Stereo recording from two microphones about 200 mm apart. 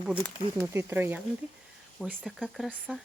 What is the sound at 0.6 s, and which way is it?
Speech, 10° right (ahead or behind).